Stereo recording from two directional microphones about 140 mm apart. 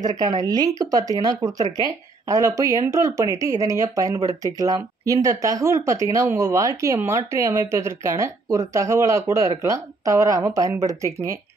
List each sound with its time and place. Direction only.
0.2 s speech: 30° right (ahead or behind)